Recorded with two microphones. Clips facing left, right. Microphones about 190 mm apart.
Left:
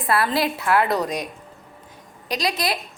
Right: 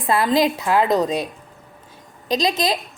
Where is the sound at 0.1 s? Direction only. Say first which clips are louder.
Right 4 dB; 20° right (ahead or behind).